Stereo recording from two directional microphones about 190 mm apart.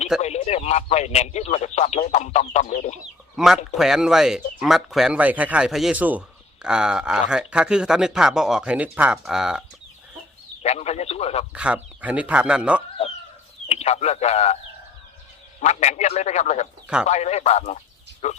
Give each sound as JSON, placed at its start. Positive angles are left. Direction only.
{"t": 0.2, "sound": "speech", "side_deg": 35}
{"t": 3.3, "sound": "speech", "side_deg": 0}
{"t": 10.6, "sound": "speech", "side_deg": 35}
{"t": 11.5, "sound": "speech", "side_deg": -5}
{"t": 13.7, "sound": "speech", "side_deg": 35}
{"t": 15.6, "sound": "speech", "side_deg": 35}